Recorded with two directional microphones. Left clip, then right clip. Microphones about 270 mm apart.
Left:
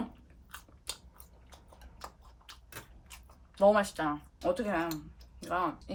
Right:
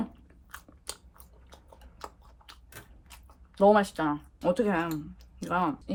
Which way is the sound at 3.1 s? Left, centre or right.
Centre.